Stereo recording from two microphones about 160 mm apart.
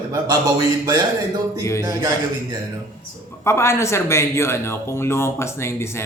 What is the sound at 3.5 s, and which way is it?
Speech, 15° left (ahead or behind).